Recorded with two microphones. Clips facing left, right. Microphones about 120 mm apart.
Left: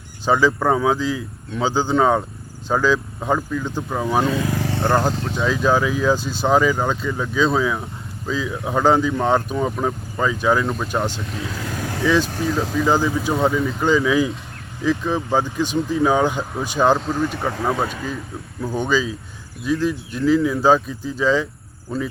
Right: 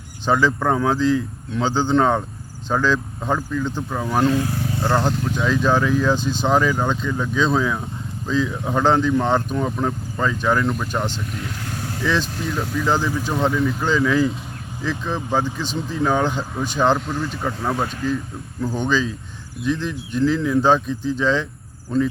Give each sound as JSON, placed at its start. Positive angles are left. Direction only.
{"t": 0.3, "sound": "speech", "side_deg": 10}
{"t": 4.5, "sound": "vehicle", "side_deg": 85}
{"t": 4.9, "sound": "speech", "side_deg": 10}
{"t": 12.7, "sound": "speech", "side_deg": 10}